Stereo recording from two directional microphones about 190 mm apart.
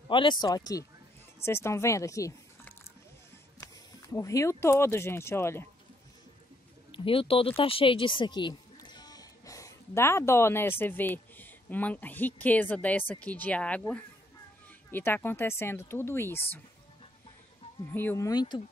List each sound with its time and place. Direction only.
0.1 s speech: 25° left (ahead or behind)
6.9 s speech: 30° left (ahead or behind); by 16.6 s 10° left (ahead or behind)
17.9 s speech: 15° left (ahead or behind)